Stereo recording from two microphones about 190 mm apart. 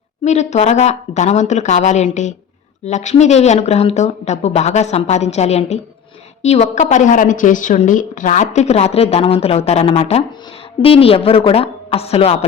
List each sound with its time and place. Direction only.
0.3 s a woman's voice: 35° left (ahead or behind)